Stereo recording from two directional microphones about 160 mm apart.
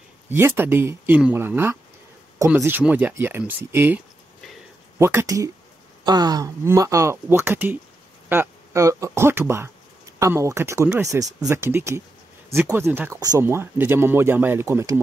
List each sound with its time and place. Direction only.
0.3 s speech: 15° right (ahead or behind)